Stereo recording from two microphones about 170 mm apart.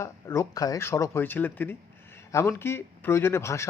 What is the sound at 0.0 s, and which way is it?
A man's voice, 15° left (ahead or behind).